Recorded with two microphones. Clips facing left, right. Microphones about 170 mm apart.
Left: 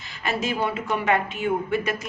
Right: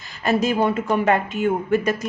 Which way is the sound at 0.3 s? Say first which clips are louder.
Right 6 dB; 40° right (ahead or behind).